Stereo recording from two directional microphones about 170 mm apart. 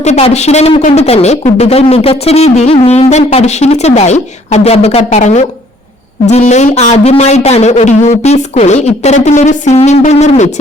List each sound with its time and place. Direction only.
0.0 s speech: 40° left (ahead or behind)